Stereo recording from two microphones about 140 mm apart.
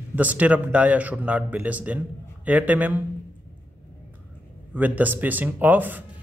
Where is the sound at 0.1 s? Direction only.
10° right (ahead or behind).